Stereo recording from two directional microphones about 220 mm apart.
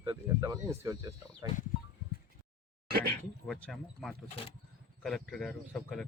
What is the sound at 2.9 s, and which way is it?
Speech, 45° right (ahead or behind).